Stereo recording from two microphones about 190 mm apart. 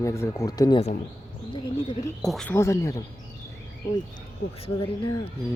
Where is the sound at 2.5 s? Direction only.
15° left (ahead or behind).